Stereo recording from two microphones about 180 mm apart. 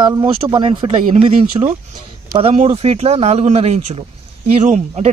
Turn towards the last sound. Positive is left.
turn(degrees=-40)  # may be behind; listen again after turning